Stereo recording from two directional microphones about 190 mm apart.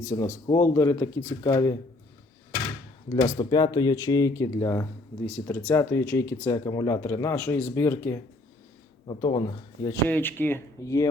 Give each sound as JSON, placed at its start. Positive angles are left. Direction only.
{"t": 0.0, "sound": "speech", "side_deg": 15}
{"t": 3.1, "sound": "speech", "side_deg": 20}
{"t": 9.0, "sound": "a man's voice", "side_deg": 25}
{"t": 10.1, "sound": "speech", "side_deg": 10}